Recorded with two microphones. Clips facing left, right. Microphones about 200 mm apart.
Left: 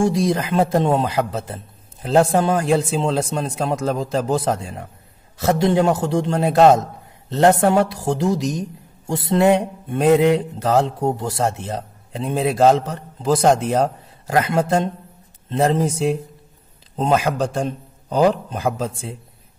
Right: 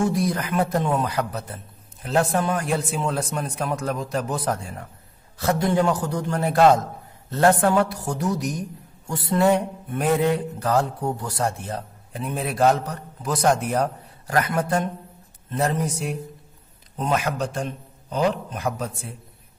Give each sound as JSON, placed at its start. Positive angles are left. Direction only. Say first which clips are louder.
{"t": 0.2, "sound": "mantra", "louder": "left 5 dB", "side_deg": 25}
{"t": 7.2, "sound": "speech", "louder": "left 4 dB", "side_deg": 20}
{"t": 7.6, "sound": "mantra", "louder": "left 3 dB", "side_deg": 25}
{"t": 7.9, "sound": "a woman's voice", "louder": "left 7 dB", "side_deg": 90}
{"t": 8.2, "sound": "mantra", "louder": "left 3 dB", "side_deg": 25}